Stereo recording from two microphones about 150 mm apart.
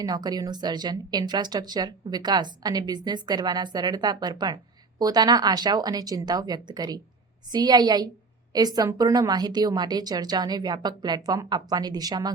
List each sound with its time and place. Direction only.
0.0 s speech: 25° right (ahead or behind)